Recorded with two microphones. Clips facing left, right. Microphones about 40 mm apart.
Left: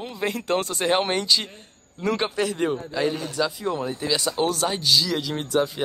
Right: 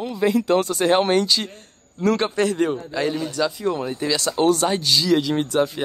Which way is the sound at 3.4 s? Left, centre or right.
Centre.